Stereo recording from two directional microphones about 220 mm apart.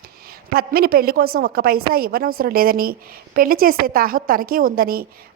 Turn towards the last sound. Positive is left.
turn(degrees=-40)  # may be behind; listen again after turning